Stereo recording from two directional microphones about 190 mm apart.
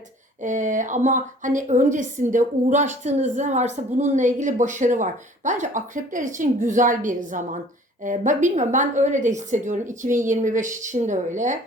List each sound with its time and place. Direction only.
0.4 s a woman's voice: 40° right (ahead or behind)